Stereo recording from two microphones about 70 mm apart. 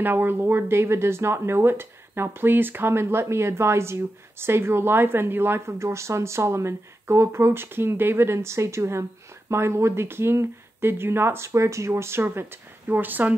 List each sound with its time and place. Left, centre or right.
0.0 s speech: right